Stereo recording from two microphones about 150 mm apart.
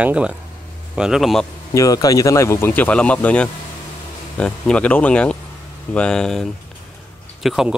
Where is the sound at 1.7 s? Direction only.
25° left (ahead or behind).